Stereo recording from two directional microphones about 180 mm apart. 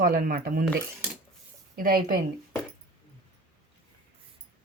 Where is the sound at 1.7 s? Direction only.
55° right (ahead or behind).